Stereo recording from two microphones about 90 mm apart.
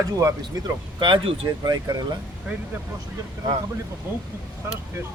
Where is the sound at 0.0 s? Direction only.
40° right (ahead or behind).